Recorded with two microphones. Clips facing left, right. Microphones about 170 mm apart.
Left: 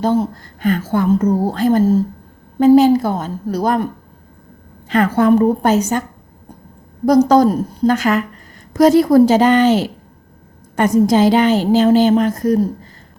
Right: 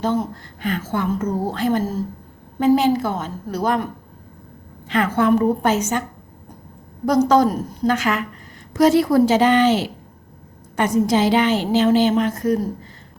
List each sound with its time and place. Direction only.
0.0 s a woman's voice: 35° left (ahead or behind)
4.9 s a woman's voice: 40° left (ahead or behind)
7.0 s a woman's voice: 40° left (ahead or behind)